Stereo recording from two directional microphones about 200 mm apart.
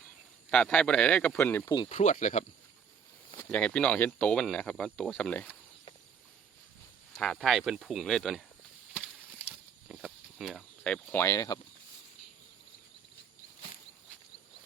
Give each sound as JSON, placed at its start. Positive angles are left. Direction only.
{"t": 0.5, "sound": "speech", "side_deg": 5}
{"t": 1.9, "sound": "speech", "side_deg": 35}
{"t": 3.3, "sound": "speech", "side_deg": 5}
{"t": 7.1, "sound": "speech", "side_deg": 0}
{"t": 8.9, "sound": "a sound", "side_deg": -5}